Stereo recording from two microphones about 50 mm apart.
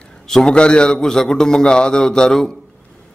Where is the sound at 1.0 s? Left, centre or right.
Centre.